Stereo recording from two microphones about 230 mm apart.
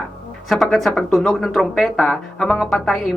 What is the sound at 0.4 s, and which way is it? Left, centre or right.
Speech, centre.